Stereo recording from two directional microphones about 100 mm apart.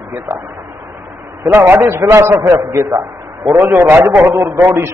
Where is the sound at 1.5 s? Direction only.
20° right (ahead or behind).